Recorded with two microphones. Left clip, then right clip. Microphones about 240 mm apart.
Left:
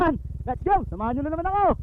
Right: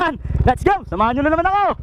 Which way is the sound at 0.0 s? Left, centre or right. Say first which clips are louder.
Right 6 dB; centre.